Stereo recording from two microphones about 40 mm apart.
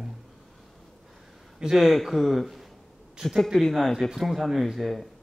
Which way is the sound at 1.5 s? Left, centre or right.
Centre.